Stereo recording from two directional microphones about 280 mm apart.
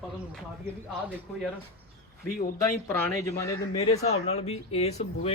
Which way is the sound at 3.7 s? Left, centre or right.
Left.